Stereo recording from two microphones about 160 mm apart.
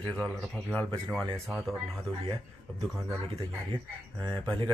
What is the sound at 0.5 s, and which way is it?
Speech, centre (ahead or behind).